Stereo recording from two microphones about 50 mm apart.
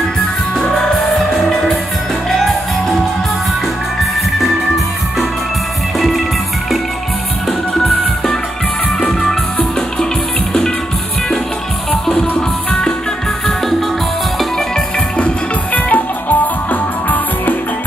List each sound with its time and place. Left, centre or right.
0.7 s music: centre
4.0 s music: centre
5.9 s music: centre
7.4 s music: centre
11.9 s music: centre
15.1 s music: left